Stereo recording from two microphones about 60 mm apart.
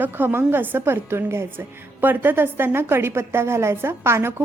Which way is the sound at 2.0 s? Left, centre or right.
Right.